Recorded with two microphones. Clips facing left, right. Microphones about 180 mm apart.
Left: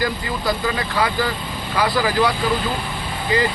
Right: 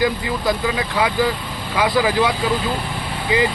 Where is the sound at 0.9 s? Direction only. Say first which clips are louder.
Right 4 dB; 10° right (ahead or behind).